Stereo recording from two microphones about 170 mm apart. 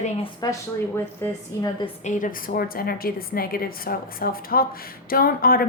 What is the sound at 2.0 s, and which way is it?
A woman's voice, 50° left (ahead or behind).